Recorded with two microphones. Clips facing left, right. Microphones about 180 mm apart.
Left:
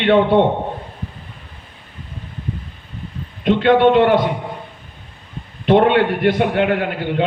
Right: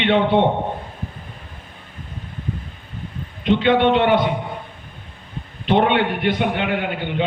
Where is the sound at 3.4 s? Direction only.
55° left (ahead or behind).